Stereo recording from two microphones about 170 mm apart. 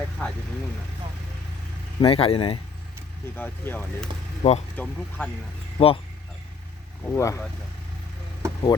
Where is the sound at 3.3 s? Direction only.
10° left (ahead or behind).